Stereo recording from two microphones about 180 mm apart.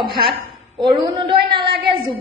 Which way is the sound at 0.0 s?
25° right (ahead or behind).